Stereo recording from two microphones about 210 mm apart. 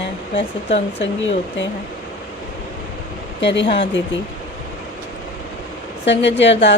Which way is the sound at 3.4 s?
55° left (ahead or behind).